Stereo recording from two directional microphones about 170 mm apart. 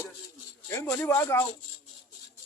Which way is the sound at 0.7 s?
15° left (ahead or behind).